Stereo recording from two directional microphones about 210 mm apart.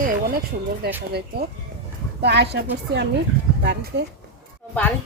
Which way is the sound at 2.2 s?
50° right (ahead or behind).